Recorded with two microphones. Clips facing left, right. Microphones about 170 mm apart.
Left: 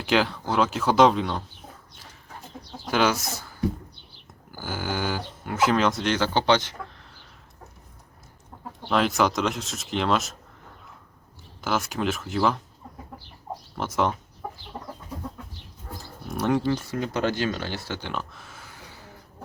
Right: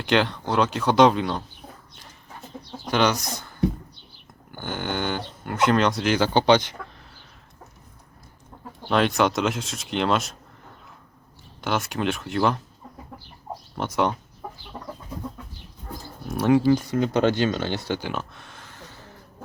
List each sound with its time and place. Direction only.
0.0 s speech: 5° left (ahead or behind)
2.9 s speech: 5° left (ahead or behind)
4.5 s speech: 5° left (ahead or behind); by 6.7 s 15° right (ahead or behind)
8.9 s speech: centre (ahead or behind)
11.6 s speech: centre (ahead or behind)
13.7 s speech: centre (ahead or behind)
16.3 s speech: 5° right (ahead or behind)
16.9 s speech: 20° right (ahead or behind)
18.0 s a sound: centre (ahead or behind)